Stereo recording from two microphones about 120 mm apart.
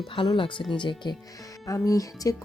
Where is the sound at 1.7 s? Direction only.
30° left (ahead or behind).